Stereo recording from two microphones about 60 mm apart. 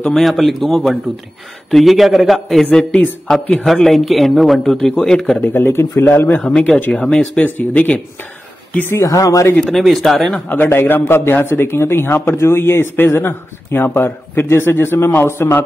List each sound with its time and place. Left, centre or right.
0.1 s speech: centre
2.6 s speech: centre
5.4 s a man's voice: left
6.4 s speech: centre
7.4 s speech: left
8.9 s speech: left
9.6 s speech: centre
10.5 s a man's voice: left